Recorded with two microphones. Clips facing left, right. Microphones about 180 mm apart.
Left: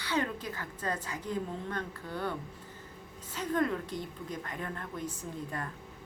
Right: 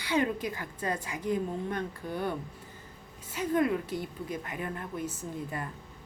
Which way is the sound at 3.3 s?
10° right (ahead or behind).